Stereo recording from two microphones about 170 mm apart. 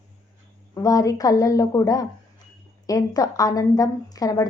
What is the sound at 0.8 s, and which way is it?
A woman's voice, 20° left (ahead or behind).